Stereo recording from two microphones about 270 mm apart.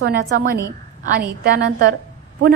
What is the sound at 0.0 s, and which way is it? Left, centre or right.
Speech, right.